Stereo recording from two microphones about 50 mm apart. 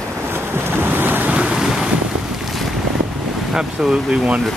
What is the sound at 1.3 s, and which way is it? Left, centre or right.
Boat, right.